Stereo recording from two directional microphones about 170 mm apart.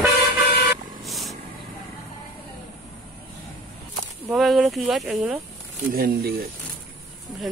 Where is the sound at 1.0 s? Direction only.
Centre (ahead or behind).